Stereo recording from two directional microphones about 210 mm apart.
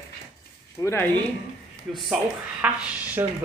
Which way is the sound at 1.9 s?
Centre (ahead or behind).